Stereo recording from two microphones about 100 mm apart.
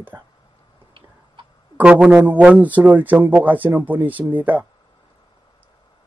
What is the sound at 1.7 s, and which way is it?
A man's voice, 15° right (ahead or behind).